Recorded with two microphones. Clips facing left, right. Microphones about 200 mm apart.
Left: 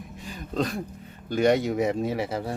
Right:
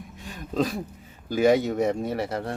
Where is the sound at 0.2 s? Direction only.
Centre (ahead or behind).